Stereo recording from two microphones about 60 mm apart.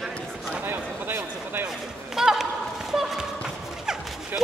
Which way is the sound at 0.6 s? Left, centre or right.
Right.